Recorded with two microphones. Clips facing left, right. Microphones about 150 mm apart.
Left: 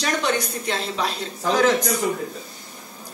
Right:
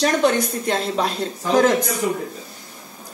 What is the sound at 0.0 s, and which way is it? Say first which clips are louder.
A woman's voice: right 6 dB; 45° right (ahead or behind).